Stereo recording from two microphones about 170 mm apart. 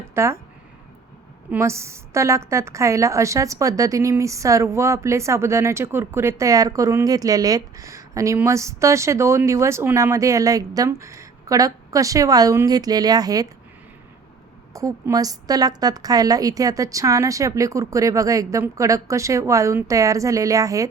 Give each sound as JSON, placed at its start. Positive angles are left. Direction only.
{"t": 0.1, "sound": "speech", "side_deg": -15}
{"t": 1.5, "sound": "a woman's voice", "side_deg": -15}
{"t": 14.7, "sound": "a woman's voice", "side_deg": -20}